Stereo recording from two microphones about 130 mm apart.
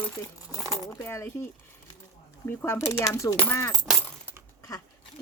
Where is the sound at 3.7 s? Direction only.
Centre (ahead or behind).